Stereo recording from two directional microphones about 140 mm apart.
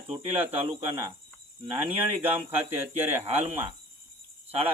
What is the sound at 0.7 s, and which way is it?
Speech, 25° right (ahead or behind).